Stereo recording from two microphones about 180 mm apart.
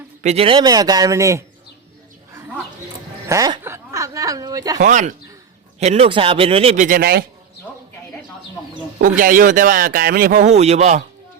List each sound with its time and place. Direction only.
0.2 s a man's voice: 35° right (ahead or behind); by 1.5 s 15° right (ahead or behind)
3.2 s a sound: 20° right (ahead or behind)
4.8 s speech: 40° right (ahead or behind)
6.8 s speech: 55° right (ahead or behind)
9.0 s speech: 50° right (ahead or behind)